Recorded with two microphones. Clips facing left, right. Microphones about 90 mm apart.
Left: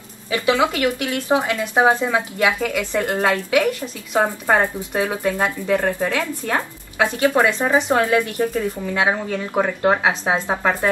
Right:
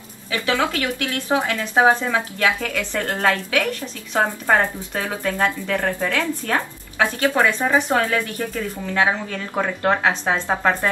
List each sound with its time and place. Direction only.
0.3 s speech: 15° left (ahead or behind)